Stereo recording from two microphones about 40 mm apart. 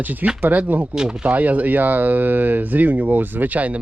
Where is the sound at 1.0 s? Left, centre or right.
Centre.